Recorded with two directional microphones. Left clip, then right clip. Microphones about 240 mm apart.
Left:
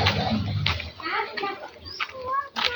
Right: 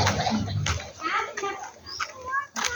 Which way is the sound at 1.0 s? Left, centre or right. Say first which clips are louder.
Right 2 dB; right.